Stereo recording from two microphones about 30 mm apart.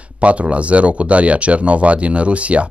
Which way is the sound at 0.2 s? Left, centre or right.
Right.